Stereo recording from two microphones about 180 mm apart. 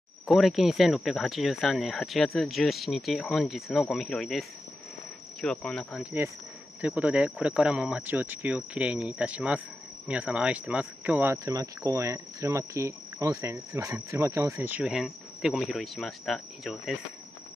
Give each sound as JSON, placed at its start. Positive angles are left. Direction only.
{"t": 0.3, "sound": "speech", "side_deg": 0}
{"t": 6.8, "sound": "cricket", "side_deg": -5}
{"t": 11.3, "sound": "cricket", "side_deg": -20}